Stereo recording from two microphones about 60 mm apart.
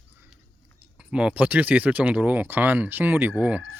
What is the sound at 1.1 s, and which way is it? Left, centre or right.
Speech, centre.